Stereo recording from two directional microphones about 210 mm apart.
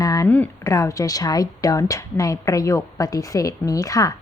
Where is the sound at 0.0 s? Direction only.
15° left (ahead or behind).